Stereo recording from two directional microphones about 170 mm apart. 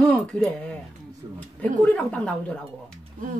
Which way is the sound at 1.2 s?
25° right (ahead or behind).